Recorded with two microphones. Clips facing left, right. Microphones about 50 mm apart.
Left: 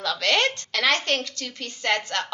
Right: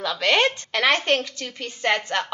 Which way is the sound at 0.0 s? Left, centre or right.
Centre.